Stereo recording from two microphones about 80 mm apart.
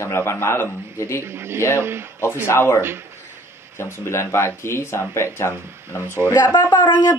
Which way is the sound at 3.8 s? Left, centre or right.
Left.